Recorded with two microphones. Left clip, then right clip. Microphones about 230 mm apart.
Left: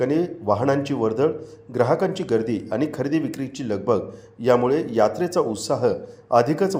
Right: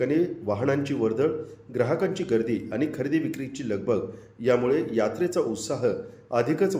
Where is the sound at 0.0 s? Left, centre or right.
Left.